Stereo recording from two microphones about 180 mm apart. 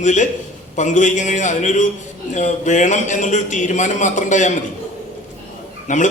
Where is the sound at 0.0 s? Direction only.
40° left (ahead or behind).